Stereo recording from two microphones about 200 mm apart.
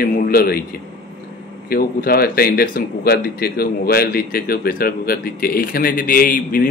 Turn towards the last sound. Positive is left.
turn(degrees=45)  # may be behind; listen again after turning